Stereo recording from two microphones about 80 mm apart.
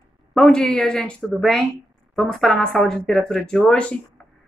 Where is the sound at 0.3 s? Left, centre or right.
Centre.